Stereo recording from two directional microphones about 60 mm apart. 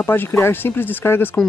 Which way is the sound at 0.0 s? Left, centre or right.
Left.